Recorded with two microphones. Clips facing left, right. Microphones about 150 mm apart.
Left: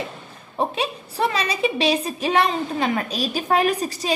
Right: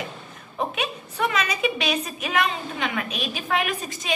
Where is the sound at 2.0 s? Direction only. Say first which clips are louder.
Left 5 dB; 30° left (ahead or behind).